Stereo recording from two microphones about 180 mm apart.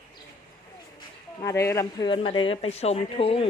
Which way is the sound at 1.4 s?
15° left (ahead or behind).